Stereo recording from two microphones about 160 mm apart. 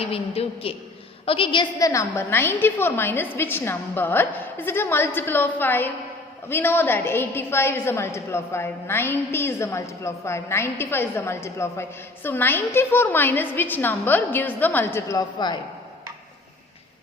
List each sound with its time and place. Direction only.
0.0 s a woman's voice: 35° left (ahead or behind); by 15.2 s 15° left (ahead or behind)
15.4 s speech: 25° left (ahead or behind)